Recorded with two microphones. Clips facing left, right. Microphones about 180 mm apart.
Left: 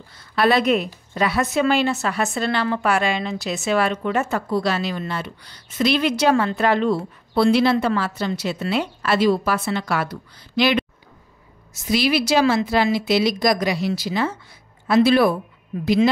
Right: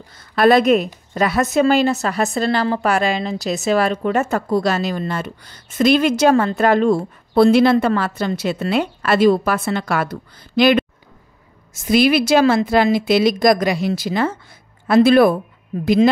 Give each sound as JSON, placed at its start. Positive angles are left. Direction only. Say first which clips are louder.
{"t": 0.2, "sound": "a woman's voice", "louder": "right 5 dB", "side_deg": -45}